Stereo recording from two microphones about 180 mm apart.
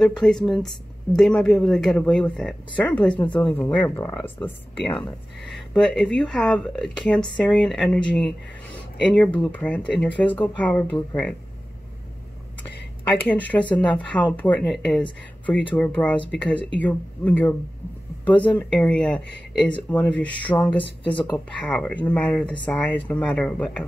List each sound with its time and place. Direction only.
0.0 s speech: centre (ahead or behind)
13.3 s speech: 10° left (ahead or behind)